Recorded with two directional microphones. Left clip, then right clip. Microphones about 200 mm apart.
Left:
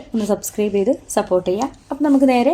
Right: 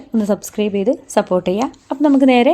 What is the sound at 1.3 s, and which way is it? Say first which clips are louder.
Speech: right 1 dB; 35° right (ahead or behind).